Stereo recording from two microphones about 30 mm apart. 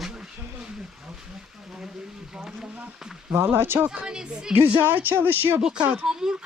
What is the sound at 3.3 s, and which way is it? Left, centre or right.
Speech, right.